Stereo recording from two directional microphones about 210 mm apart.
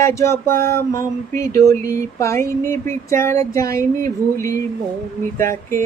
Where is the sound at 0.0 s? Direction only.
15° left (ahead or behind).